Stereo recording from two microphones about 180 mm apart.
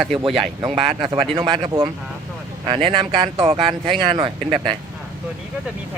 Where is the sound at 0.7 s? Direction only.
35° right (ahead or behind).